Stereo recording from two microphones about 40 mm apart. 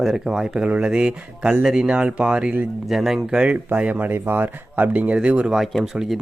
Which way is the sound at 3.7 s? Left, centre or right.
Right.